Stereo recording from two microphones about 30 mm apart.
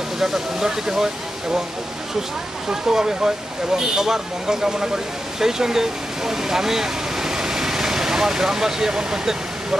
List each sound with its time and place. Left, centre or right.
0.2 s speech: centre
2.7 s speech: centre